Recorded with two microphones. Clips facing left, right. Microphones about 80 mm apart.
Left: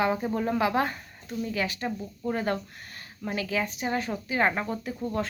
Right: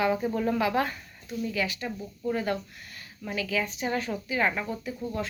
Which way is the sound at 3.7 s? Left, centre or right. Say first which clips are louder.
Even; left.